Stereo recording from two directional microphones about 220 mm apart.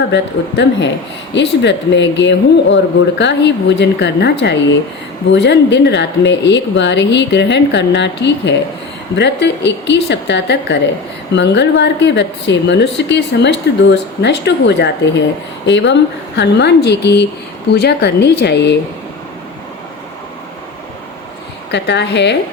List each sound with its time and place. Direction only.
0.1 s speech: 50° left (ahead or behind)
21.7 s speech: 50° left (ahead or behind)